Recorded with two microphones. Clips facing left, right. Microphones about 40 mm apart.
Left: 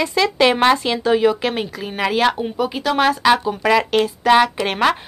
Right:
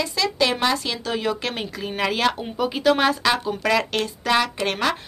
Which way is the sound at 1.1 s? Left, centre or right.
Centre.